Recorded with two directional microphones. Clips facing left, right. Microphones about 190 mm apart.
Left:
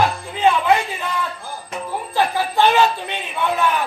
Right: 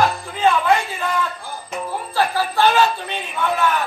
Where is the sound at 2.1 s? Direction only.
20° left (ahead or behind).